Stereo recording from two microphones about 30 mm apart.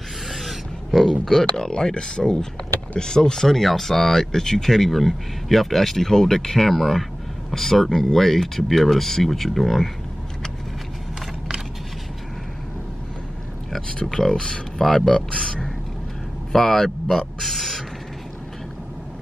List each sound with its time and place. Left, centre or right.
0.3 s a sound: centre
1.4 s speech: left; by 6.0 s centre
6.0 s speech: centre
13.9 s speech: left
14.8 s speech: centre
15.0 s speech: left
16.5 s speech: centre
17.4 s a sound: centre